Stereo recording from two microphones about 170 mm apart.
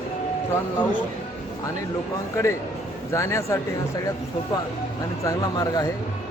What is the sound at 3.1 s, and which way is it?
Speech, 15° left (ahead or behind).